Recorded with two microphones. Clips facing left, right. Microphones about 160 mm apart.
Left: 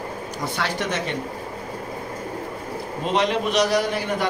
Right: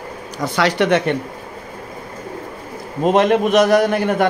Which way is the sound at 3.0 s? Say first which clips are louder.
Right 8 dB; 50° right (ahead or behind).